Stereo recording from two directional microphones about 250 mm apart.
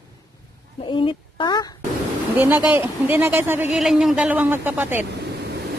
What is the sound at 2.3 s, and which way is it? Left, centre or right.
A woman's voice, centre.